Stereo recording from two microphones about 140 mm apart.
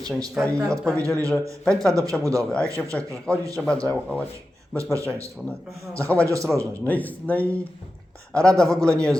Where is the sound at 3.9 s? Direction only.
5° left (ahead or behind).